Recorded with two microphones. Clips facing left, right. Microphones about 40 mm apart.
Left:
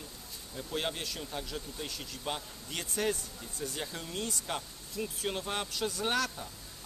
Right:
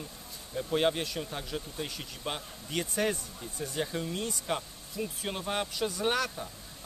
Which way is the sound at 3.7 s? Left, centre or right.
Centre.